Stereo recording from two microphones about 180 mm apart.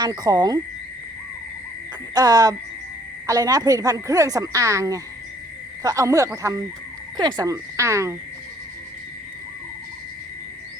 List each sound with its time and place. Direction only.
0.0 s a woman's voice: 20° right (ahead or behind)
2.1 s a woman's voice: 20° right (ahead or behind)